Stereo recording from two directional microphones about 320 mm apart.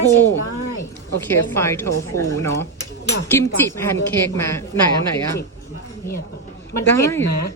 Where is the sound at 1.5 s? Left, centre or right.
Centre.